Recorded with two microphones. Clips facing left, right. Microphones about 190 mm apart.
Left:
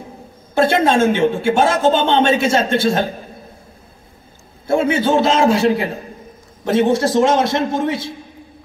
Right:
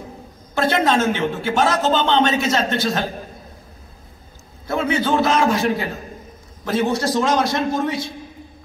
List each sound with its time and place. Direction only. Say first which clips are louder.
0.6 s a man's voice: left 4 dB; 25° left (ahead or behind)
4.6 s a man's voice: left 4 dB; 25° left (ahead or behind)